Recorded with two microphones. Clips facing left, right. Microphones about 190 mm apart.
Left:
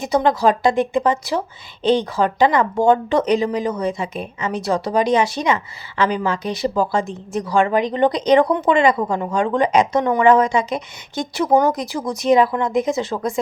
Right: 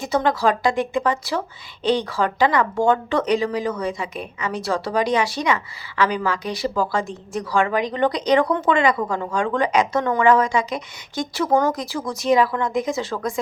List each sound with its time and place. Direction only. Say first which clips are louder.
0.0 s speech: left 3 dB; 20° left (ahead or behind)